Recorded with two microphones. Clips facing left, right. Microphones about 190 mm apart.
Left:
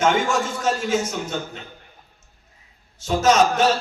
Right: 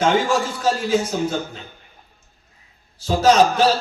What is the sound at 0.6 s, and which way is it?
Speech, 30° right (ahead or behind).